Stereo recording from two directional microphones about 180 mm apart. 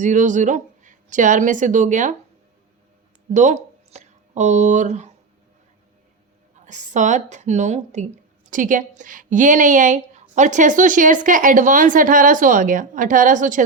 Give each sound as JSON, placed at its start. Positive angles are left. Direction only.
{"t": 0.0, "sound": "a woman's voice", "side_deg": -45}
{"t": 3.2, "sound": "speech", "side_deg": -40}
{"t": 6.7, "sound": "a woman's voice", "side_deg": -45}